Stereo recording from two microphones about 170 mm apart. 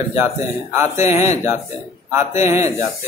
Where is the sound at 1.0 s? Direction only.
40° left (ahead or behind).